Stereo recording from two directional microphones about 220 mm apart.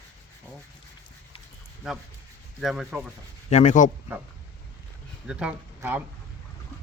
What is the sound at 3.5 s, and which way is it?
Speech, 30° left (ahead or behind).